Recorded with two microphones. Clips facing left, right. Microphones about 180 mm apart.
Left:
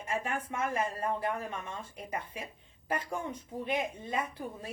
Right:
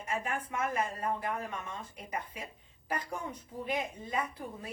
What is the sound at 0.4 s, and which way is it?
Speech, 30° left (ahead or behind).